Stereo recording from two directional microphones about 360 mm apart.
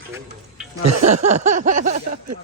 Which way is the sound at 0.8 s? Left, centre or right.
Right.